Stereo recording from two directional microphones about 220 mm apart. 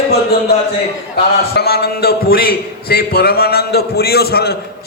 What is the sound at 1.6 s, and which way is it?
A man's voice, 45° left (ahead or behind).